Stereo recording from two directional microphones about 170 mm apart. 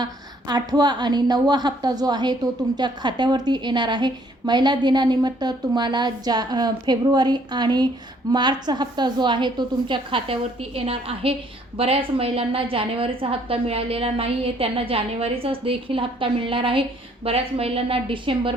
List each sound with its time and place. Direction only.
0.0 s a woman's voice: 25° right (ahead or behind)